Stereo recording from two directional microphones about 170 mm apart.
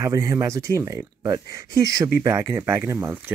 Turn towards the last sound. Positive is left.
turn(degrees=-15)  # may be behind; listen again after turning